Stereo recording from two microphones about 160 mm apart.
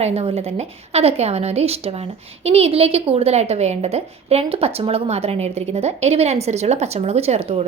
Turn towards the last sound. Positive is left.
turn(degrees=-40)  # may be behind; listen again after turning